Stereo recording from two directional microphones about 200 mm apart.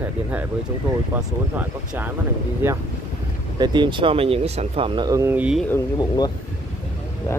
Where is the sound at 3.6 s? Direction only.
20° right (ahead or behind); by 5.6 s 5° right (ahead or behind).